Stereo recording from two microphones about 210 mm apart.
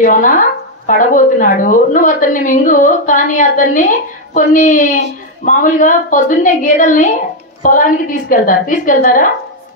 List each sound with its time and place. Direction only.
0.0 s speech: 40° left (ahead or behind)